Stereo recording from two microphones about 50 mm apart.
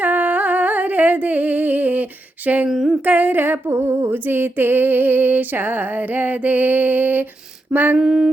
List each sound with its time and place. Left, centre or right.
0.0 s humming: right
2.6 s a sound: centre
3.1 s music: right
3.7 s music: right
7.9 s mantra: centre